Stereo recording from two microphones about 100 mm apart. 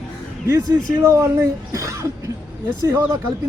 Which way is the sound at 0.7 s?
25° right (ahead or behind).